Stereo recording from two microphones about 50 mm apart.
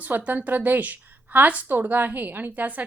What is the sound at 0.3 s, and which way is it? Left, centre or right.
A woman's voice, right.